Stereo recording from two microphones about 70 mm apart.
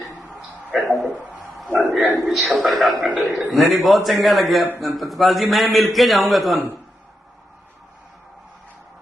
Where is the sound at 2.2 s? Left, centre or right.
Centre.